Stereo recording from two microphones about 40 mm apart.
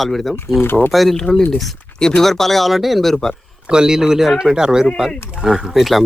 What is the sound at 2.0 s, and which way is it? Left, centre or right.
Speech, centre.